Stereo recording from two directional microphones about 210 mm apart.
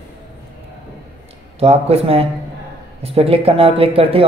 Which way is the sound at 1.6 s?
30° right (ahead or behind).